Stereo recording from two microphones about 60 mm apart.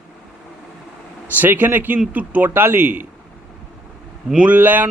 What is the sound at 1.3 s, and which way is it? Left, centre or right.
Speech, right.